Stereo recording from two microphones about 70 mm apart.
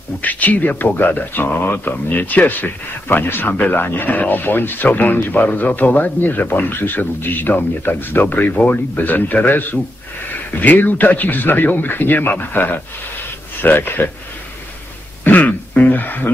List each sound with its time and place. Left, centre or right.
0.2 s speech: left
15.2 s throat clearing: left